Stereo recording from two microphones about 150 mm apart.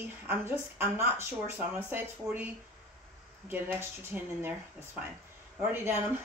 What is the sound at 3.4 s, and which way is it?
A woman's voice, 15° right (ahead or behind).